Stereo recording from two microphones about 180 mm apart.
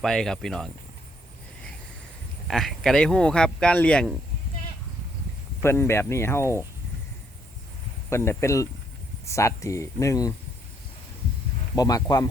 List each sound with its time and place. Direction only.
0.0 s speech: 5° left (ahead or behind)
2.5 s speech: centre (ahead or behind)
5.6 s speech: 15° left (ahead or behind)
8.1 s speech: 15° left (ahead or behind)
11.7 s speech: 20° left (ahead or behind)